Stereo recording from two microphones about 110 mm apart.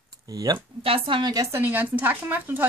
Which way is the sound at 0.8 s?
55° right (ahead or behind).